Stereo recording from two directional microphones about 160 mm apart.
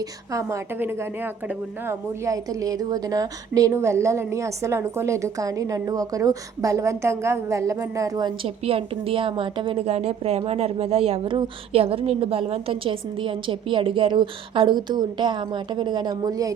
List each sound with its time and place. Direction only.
0.3 s a woman's voice: 20° right (ahead or behind)
8.4 s a woman's voice: 35° right (ahead or behind)